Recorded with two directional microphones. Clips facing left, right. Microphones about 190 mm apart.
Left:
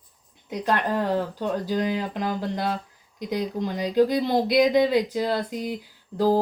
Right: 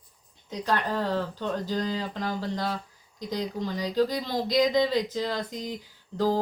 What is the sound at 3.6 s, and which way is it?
Speech, 15° left (ahead or behind).